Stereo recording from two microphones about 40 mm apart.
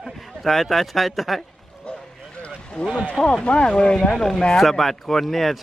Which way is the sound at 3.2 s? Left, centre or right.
Left.